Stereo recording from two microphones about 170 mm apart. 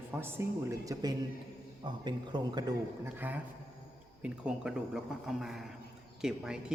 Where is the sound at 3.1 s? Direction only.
10° right (ahead or behind).